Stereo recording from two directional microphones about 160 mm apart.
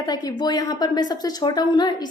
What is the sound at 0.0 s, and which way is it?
A woman's voice, 25° left (ahead or behind).